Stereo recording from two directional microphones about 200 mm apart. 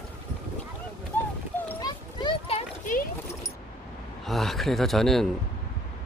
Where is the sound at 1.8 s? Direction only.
20° left (ahead or behind); by 3.1 s 40° left (ahead or behind).